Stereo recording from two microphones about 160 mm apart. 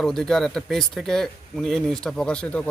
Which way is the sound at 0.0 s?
5° left (ahead or behind).